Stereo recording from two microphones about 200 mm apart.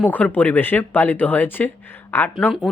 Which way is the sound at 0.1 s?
10° left (ahead or behind).